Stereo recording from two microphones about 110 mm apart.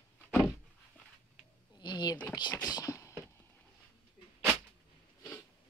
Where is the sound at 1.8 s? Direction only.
45° left (ahead or behind).